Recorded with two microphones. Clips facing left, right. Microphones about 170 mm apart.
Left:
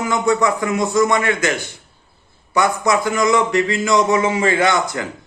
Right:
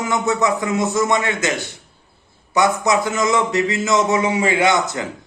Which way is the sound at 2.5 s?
20° right (ahead or behind).